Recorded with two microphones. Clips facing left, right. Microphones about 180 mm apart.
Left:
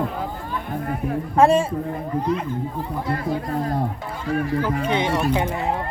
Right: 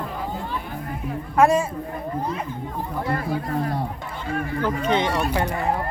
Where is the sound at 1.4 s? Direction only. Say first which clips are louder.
Left 2 dB; 30° left (ahead or behind).